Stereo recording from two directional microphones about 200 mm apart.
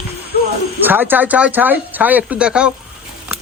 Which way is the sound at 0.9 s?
10° right (ahead or behind).